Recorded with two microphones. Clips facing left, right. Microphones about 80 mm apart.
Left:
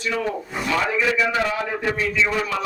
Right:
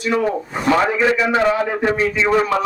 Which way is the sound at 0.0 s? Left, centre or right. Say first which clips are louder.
Right 6 dB; right.